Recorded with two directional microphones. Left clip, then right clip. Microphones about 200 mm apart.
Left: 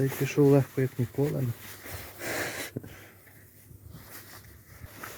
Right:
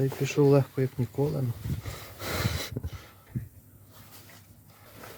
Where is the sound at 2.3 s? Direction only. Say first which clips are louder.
Even; 5° left (ahead or behind).